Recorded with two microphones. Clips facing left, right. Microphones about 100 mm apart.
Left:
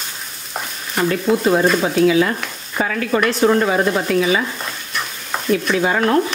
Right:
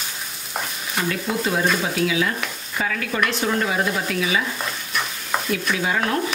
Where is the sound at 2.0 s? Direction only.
40° left (ahead or behind).